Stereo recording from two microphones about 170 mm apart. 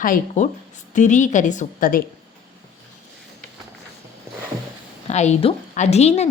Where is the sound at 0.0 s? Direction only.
55° left (ahead or behind).